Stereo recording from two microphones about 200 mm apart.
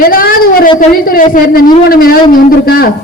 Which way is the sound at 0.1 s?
45° left (ahead or behind).